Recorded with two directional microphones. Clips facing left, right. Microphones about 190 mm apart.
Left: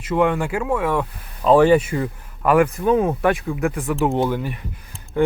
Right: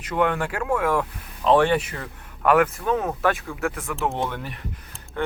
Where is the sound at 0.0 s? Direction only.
5° left (ahead or behind).